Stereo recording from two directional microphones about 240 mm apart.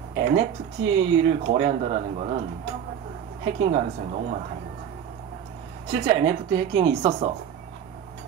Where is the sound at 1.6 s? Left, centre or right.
Right.